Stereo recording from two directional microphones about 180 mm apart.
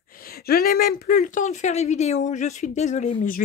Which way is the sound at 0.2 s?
55° left (ahead or behind).